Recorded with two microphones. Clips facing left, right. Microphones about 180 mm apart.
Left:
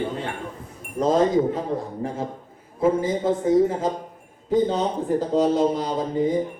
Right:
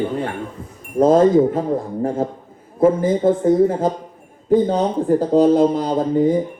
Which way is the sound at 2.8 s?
50° right (ahead or behind).